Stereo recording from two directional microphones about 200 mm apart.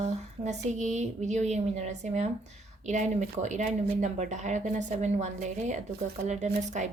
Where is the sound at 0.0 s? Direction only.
35° right (ahead or behind).